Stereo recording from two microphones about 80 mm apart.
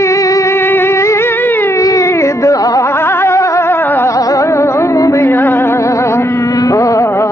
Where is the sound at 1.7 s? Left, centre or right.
Left.